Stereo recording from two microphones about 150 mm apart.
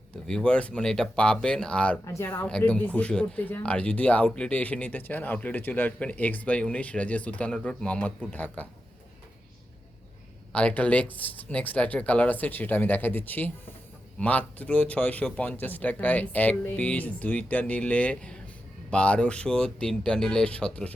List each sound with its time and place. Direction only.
0.3 s speech: 5° left (ahead or behind)
2.0 s speech: 20° left (ahead or behind)
2.3 s speech: 10° left (ahead or behind)
10.5 s speech: 10° left (ahead or behind)